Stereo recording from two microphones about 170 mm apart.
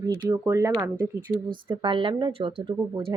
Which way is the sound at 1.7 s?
30° right (ahead or behind).